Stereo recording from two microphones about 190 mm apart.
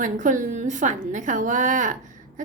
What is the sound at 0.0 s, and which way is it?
A woman's voice, 40° right (ahead or behind).